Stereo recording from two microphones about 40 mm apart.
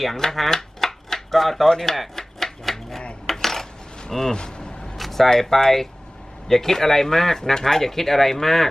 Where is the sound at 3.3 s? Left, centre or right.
Centre.